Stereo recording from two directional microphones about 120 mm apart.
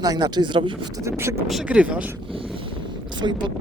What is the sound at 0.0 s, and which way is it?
Speech, 35° right (ahead or behind).